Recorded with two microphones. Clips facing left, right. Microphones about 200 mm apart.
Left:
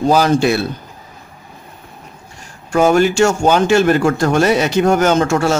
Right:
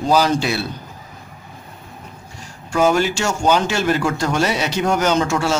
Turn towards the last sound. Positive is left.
turn(degrees=50)  # may be behind; listen again after turning